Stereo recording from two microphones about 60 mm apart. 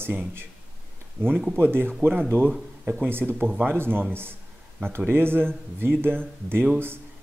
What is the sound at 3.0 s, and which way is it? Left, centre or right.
Speech, right.